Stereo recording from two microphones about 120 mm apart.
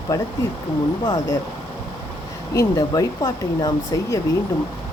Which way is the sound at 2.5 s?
30° left (ahead or behind).